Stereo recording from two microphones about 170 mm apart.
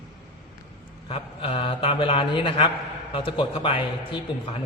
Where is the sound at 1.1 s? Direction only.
35° left (ahead or behind).